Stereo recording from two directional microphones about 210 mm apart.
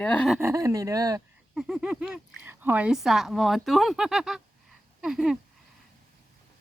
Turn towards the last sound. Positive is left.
turn(degrees=-5)  # may be behind; listen again after turning